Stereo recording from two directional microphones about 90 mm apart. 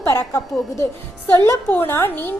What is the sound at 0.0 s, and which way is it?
Speech, 35° left (ahead or behind).